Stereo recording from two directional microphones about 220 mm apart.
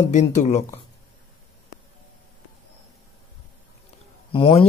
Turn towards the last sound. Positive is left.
turn(degrees=25)  # may be behind; listen again after turning